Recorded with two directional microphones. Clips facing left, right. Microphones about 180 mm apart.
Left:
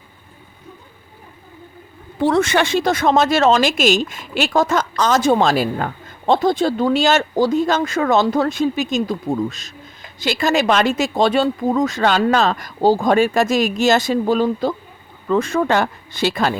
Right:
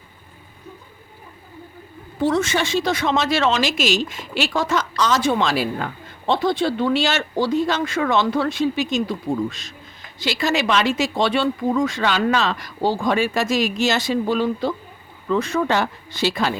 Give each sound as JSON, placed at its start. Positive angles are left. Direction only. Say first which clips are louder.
{"t": 2.2, "sound": "speech", "louder": "left 4 dB", "side_deg": 60}